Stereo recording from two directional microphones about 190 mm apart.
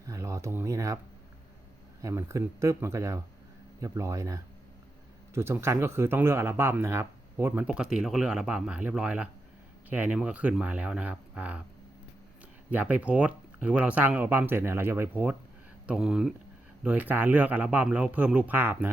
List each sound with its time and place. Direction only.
0.0 s a sound: 15° right (ahead or behind)
2.0 s speech: 15° right (ahead or behind)
12.7 s speech: 5° right (ahead or behind)